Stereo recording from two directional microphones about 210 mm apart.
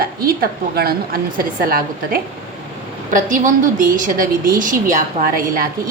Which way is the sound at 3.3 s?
40° right (ahead or behind).